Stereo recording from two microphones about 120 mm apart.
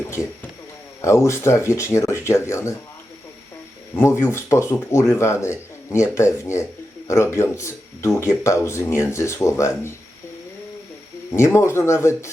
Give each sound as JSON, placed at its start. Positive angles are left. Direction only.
{"t": 0.0, "sound": "speech", "side_deg": 25}
{"t": 3.9, "sound": "speech", "side_deg": 20}
{"t": 11.3, "sound": "speech", "side_deg": 25}